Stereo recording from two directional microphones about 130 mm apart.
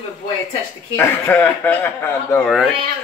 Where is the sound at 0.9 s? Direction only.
20° left (ahead or behind).